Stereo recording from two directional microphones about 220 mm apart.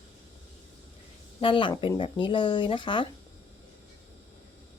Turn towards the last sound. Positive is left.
turn(degrees=20)  # may be behind; listen again after turning